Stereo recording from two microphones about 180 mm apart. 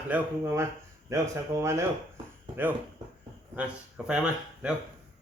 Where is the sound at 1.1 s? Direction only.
15° right (ahead or behind).